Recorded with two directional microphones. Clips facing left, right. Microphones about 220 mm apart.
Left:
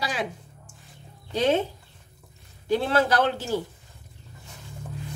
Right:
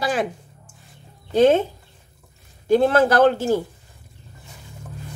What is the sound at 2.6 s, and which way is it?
Speech, 50° right (ahead or behind).